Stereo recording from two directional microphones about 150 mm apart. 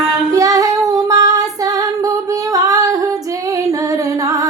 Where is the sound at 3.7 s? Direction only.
20° right (ahead or behind).